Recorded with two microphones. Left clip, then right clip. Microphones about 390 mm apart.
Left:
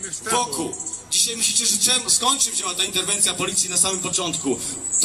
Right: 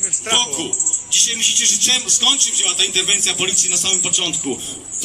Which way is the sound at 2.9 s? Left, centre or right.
Left.